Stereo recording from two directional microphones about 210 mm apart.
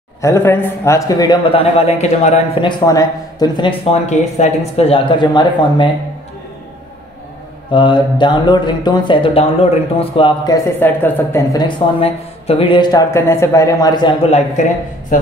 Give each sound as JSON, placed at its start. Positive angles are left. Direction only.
{"t": 0.2, "sound": "speech", "side_deg": 10}
{"t": 7.7, "sound": "speech", "side_deg": 25}